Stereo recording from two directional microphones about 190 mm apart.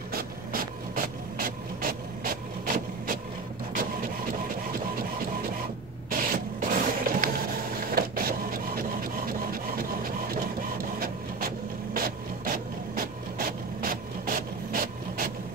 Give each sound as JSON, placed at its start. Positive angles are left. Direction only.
{"t": 0.1, "sound": "printer", "side_deg": -50}
{"t": 6.0, "sound": "printer", "side_deg": -45}
{"t": 10.3, "sound": "printer", "side_deg": -50}